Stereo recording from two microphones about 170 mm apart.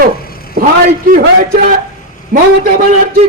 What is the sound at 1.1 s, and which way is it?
Speech, 55° right (ahead or behind).